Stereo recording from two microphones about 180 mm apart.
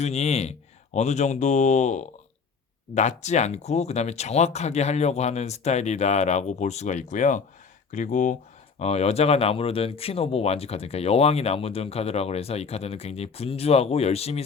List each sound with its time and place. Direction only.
0.0 s speech: 35° left (ahead or behind)